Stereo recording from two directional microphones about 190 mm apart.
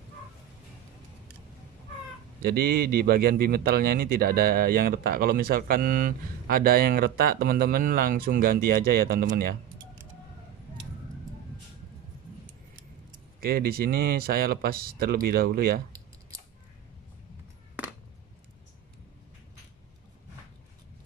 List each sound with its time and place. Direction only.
2.4 s speech: 55° right (ahead or behind)
13.4 s speech: 50° right (ahead or behind)